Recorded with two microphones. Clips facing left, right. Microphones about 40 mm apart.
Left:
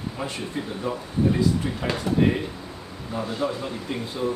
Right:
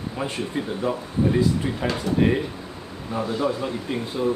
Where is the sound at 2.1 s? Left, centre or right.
Left.